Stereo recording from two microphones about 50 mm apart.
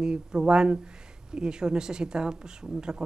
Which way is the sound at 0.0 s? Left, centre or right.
Centre.